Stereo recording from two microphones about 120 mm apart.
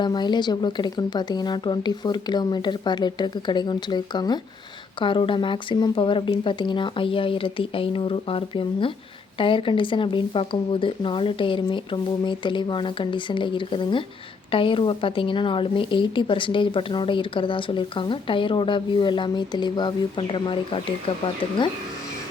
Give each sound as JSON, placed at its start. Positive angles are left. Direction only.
{"t": 0.0, "sound": "a woman's voice", "side_deg": 40}